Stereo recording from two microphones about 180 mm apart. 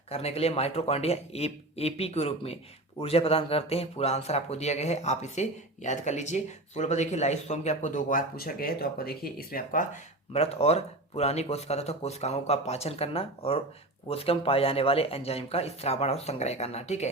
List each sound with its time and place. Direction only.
0.1 s speech: 35° left (ahead or behind)